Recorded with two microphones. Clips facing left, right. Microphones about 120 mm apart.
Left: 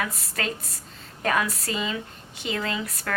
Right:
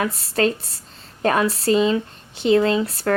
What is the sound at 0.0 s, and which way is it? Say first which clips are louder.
A woman's voice: right 10 dB; 30° right (ahead or behind).